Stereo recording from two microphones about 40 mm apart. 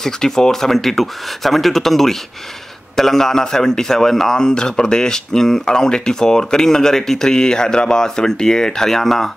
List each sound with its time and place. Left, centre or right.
0.0 s a man's voice: centre